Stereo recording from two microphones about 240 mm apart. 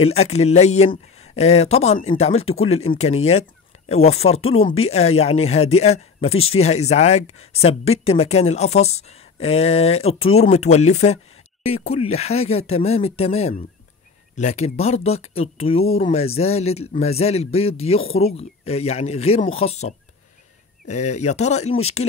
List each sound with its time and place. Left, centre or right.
0.0 s speech: left